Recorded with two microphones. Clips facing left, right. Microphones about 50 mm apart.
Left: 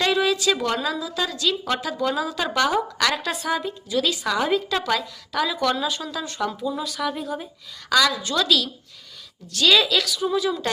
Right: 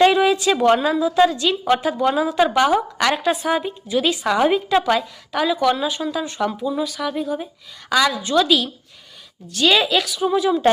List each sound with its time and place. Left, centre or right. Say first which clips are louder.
0.0 s a woman's voice: right 6 dB; right; by 7.4 s centre
7.9 s a woman's voice: right 2 dB; right